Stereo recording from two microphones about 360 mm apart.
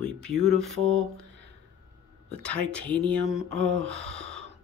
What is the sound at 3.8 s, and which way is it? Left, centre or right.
Speech, centre.